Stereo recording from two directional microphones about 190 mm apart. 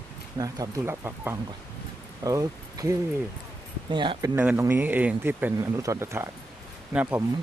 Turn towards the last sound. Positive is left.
turn(degrees=-10)  # may be behind; listen again after turning